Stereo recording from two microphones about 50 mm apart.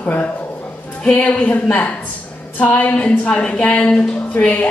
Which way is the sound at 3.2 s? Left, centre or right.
Left.